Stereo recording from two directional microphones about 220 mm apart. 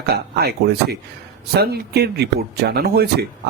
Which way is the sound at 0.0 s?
45° right (ahead or behind).